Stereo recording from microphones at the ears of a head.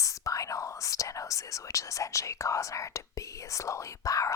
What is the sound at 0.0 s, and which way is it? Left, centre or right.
Speech, left.